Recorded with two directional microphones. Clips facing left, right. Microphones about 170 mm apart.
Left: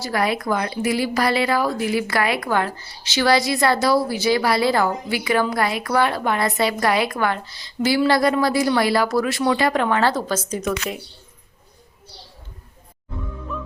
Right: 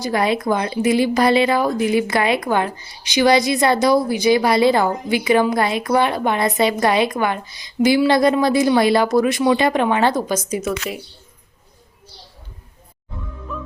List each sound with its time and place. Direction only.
0.0 s a woman's voice: 20° right (ahead or behind)
10.5 s speech: 5° right (ahead or behind)
13.5 s music: centre (ahead or behind)